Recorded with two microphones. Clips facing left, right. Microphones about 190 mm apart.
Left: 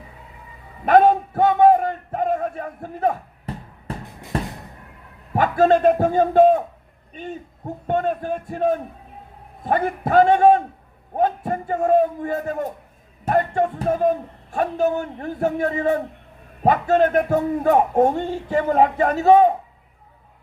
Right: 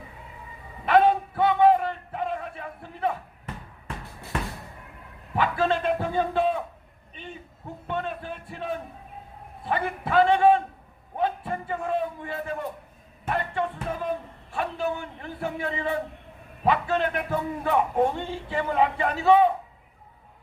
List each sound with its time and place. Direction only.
0.9 s a sound: 45° left (ahead or behind)
4.3 s music: 35° left (ahead or behind)
5.3 s a man's voice: 45° left (ahead or behind)